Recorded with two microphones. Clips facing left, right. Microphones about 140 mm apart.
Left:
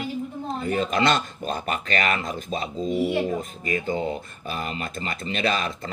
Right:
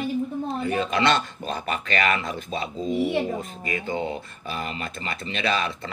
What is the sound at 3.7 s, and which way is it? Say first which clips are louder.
Speech: left 2 dB; 40° left (ahead or behind).